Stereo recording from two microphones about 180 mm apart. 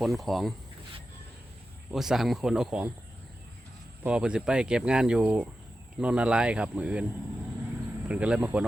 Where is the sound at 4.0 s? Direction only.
5° right (ahead or behind).